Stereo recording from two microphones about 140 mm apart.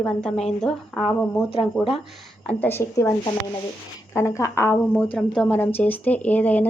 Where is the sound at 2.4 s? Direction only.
10° left (ahead or behind).